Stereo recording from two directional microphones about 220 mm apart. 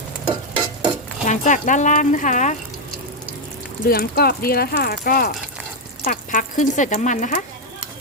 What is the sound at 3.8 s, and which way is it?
Speech, 45° left (ahead or behind).